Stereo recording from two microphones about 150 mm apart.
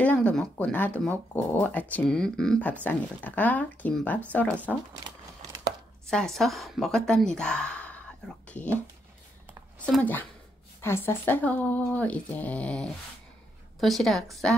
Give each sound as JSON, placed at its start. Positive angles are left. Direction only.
{"t": 0.0, "sound": "speech", "side_deg": 10}
{"t": 4.9, "sound": "a sound", "side_deg": -25}
{"t": 6.0, "sound": "a woman's voice", "side_deg": 5}
{"t": 9.8, "sound": "a woman's voice", "side_deg": 5}